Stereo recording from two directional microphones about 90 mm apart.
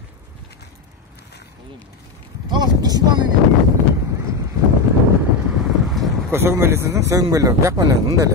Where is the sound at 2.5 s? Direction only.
50° right (ahead or behind).